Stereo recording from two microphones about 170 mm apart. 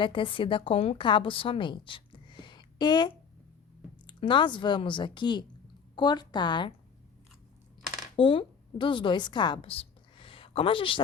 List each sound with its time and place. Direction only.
0.0 s a woman's voice: 30° left (ahead or behind)
8.1 s a woman's voice: 30° left (ahead or behind)